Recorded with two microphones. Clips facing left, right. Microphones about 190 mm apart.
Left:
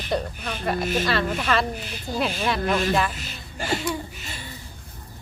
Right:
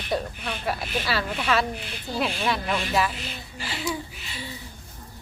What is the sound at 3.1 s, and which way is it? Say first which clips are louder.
A woman's voice: left 1 dB; 50° left (ahead or behind).